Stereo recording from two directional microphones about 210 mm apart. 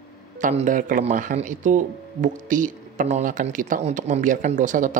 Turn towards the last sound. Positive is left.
turn(degrees=-40)  # may be behind; listen again after turning